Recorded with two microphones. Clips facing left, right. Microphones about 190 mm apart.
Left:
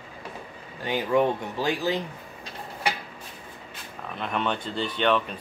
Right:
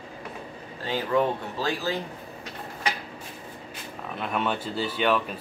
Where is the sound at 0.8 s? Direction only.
15° left (ahead or behind).